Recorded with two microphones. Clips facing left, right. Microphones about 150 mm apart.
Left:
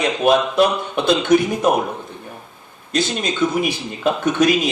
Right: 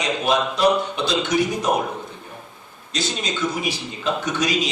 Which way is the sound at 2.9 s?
55° left (ahead or behind).